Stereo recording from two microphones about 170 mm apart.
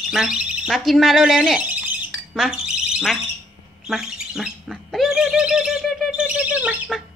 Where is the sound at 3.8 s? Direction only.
5° right (ahead or behind).